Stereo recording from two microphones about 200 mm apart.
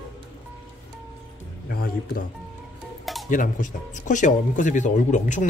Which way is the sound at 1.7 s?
50° left (ahead or behind).